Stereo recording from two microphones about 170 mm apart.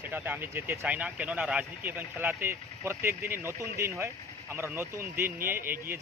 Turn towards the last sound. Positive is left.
turn(degrees=-55)  # may be behind; listen again after turning